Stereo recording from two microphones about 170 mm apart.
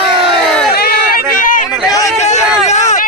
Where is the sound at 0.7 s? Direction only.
60° left (ahead or behind).